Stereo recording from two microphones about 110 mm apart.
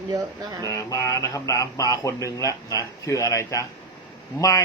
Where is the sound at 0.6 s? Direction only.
30° left (ahead or behind).